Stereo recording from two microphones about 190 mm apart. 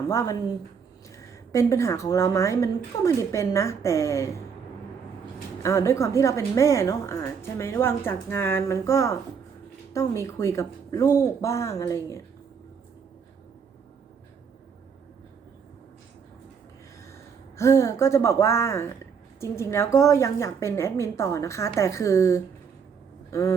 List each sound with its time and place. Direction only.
0.1 s a woman's voice: 15° left (ahead or behind)
5.6 s a woman's voice: 15° left (ahead or behind)
17.6 s a woman's voice: 15° left (ahead or behind)